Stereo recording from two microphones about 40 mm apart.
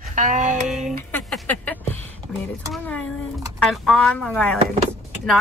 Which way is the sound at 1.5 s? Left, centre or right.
Left.